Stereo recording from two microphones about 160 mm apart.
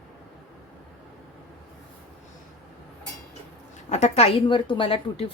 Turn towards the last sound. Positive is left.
turn(degrees=35)  # may be behind; listen again after turning